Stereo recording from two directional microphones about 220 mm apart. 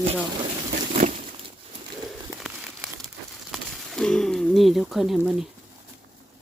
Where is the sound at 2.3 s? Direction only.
Centre (ahead or behind).